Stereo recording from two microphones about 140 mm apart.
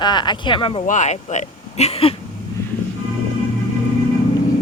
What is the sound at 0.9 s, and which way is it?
Speech, 60° left (ahead or behind).